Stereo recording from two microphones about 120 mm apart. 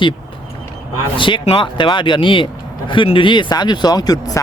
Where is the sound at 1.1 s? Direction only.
45° left (ahead or behind).